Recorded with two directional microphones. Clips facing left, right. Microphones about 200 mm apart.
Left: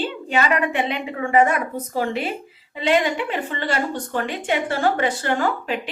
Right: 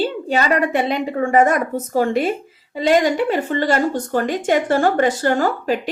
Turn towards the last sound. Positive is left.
turn(degrees=-40)  # may be behind; listen again after turning